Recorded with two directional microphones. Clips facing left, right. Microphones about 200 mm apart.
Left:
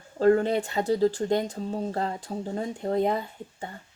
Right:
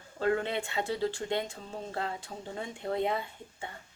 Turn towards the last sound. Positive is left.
turn(degrees=40)  # may be behind; listen again after turning